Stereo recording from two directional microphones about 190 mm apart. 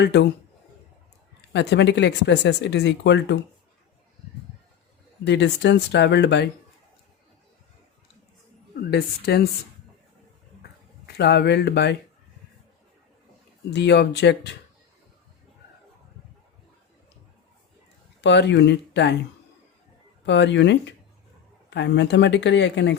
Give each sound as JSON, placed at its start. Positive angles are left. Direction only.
{"t": 0.0, "sound": "speech", "side_deg": 65}
{"t": 1.5, "sound": "speech", "side_deg": 65}
{"t": 5.2, "sound": "speech", "side_deg": 65}
{"t": 8.9, "sound": "speech", "side_deg": 55}
{"t": 10.6, "sound": "a sound", "side_deg": 60}
{"t": 13.7, "sound": "speech", "side_deg": 65}
{"t": 18.2, "sound": "speech", "side_deg": 65}
{"t": 20.2, "sound": "speech", "side_deg": 65}